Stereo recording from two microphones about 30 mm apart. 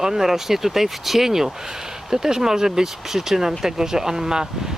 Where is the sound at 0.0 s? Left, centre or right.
Centre.